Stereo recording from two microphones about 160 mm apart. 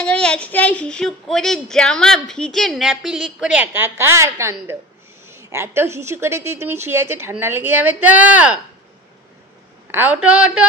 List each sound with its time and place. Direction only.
0.0 s a woman's voice: 5° left (ahead or behind); by 8.5 s 10° right (ahead or behind)
9.8 s a woman's voice: 10° right (ahead or behind)